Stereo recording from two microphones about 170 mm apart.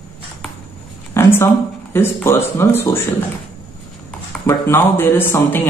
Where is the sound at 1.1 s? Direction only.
15° left (ahead or behind).